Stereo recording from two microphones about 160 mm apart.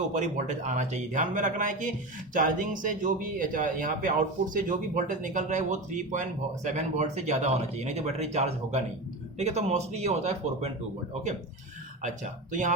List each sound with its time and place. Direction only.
0.1 s speech: 50° right (ahead or behind)
12.0 s speech: 50° right (ahead or behind)